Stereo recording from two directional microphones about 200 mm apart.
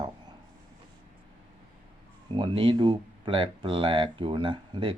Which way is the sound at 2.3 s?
25° right (ahead or behind).